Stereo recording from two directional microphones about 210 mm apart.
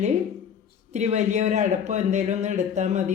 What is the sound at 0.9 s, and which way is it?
Speech, 30° right (ahead or behind).